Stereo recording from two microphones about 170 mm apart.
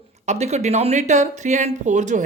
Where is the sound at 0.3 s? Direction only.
40° right (ahead or behind).